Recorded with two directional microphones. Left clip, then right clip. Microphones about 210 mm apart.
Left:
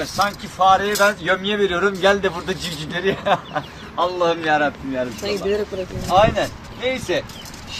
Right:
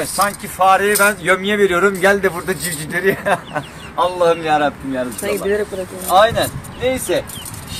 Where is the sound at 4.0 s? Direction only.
20° right (ahead or behind).